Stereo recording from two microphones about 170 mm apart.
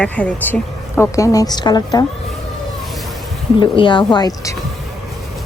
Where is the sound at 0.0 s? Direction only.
5° left (ahead or behind); by 2.0 s 25° left (ahead or behind).